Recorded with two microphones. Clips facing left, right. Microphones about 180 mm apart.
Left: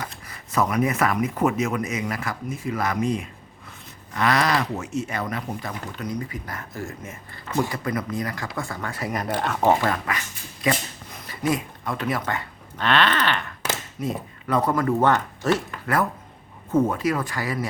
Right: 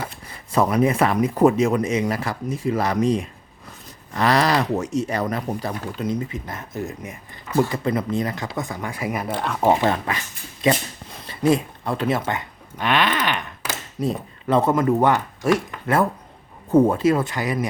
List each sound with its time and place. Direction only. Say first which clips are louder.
0.0 s speech: right 3 dB; 30° right (ahead or behind)
7.7 s speech: right 4 dB; 25° right (ahead or behind); by 9.6 s centre (ahead or behind)
9.6 s speech: right 3 dB; 25° right (ahead or behind)
14.0 s speech: right 8 dB; 30° right (ahead or behind); by 15.6 s 10° right (ahead or behind)
16.7 s speech: right 5 dB; 30° right (ahead or behind)